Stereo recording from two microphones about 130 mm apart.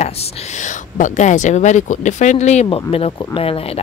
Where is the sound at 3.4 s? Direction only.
45° left (ahead or behind).